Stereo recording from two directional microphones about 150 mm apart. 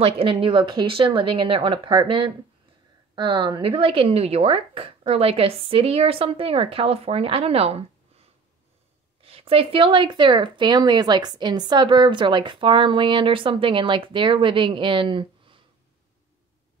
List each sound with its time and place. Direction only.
0.0 s speech: 35° right (ahead or behind)